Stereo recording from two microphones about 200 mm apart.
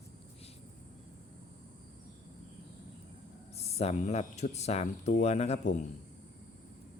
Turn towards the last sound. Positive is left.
turn(degrees=35)  # may be behind; listen again after turning